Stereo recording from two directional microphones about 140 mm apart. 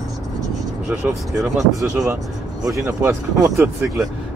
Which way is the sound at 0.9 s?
5° right (ahead or behind).